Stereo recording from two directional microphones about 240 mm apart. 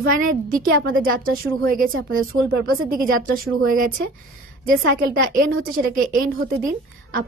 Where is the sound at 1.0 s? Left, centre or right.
Right.